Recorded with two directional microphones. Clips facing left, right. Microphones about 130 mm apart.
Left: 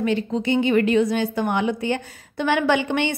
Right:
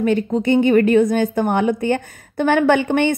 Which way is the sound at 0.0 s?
50° right (ahead or behind).